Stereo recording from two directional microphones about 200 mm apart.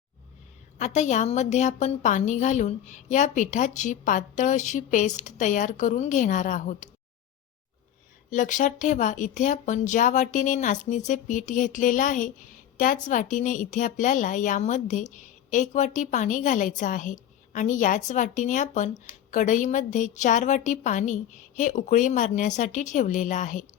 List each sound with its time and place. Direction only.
0.8 s speech: 35° left (ahead or behind)
8.3 s speech: 40° left (ahead or behind)